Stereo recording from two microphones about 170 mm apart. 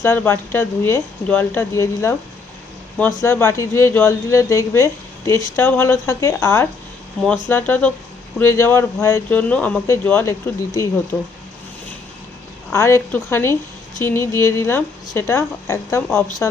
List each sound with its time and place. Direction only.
0.0 s a woman's voice: 15° left (ahead or behind)
3.2 s a woman's voice: 15° left (ahead or behind)
12.7 s a woman's voice: 15° left (ahead or behind)